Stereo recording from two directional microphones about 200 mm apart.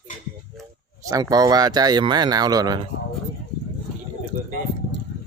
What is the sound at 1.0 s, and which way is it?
Speech, 15° right (ahead or behind).